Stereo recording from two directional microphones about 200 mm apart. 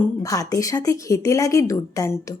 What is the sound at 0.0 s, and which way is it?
Speech, 15° left (ahead or behind).